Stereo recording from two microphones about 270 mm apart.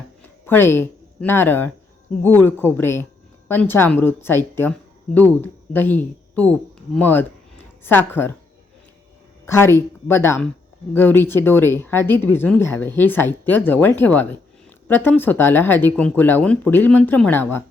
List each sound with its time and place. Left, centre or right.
0.4 s speech: centre
9.5 s speech: centre